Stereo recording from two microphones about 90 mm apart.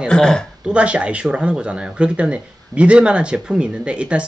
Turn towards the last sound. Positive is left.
turn(degrees=-10)  # may be behind; listen again after turning